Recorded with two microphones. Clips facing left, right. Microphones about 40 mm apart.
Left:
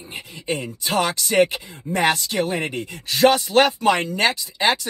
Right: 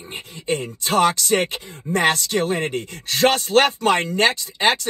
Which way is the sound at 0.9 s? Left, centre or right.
Right.